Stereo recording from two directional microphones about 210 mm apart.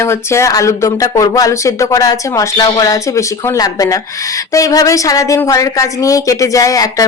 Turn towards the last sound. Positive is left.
turn(degrees=15)  # may be behind; listen again after turning